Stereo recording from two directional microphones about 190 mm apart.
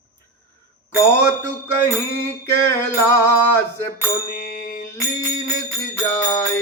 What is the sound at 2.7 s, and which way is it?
Speech, 15° left (ahead or behind).